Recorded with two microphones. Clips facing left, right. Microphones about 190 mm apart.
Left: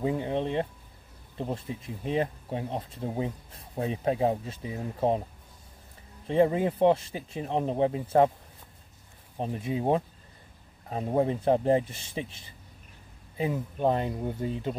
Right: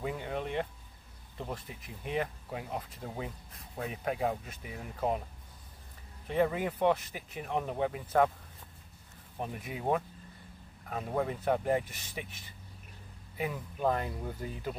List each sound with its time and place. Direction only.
0.0 s speech: 25° left (ahead or behind)
6.2 s speech: 25° left (ahead or behind)
9.4 s speech: 25° left (ahead or behind)